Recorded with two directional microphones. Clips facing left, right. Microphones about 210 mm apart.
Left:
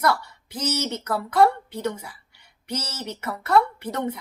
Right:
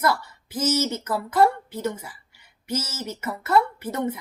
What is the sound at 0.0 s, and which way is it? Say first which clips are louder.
A woman's voice: left 1 dB; 5° right (ahead or behind).